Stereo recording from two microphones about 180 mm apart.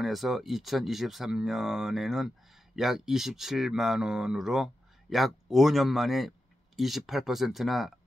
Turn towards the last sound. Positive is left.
turn(degrees=0)  # may be behind; listen again after turning